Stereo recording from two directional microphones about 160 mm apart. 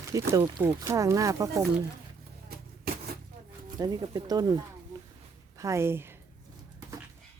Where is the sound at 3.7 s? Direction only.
25° right (ahead or behind).